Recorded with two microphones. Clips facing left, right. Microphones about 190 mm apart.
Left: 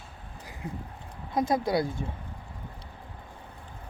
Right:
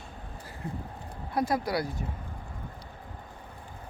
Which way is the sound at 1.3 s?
20° left (ahead or behind).